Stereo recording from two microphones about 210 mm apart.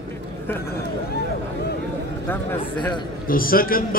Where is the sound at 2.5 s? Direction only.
20° left (ahead or behind).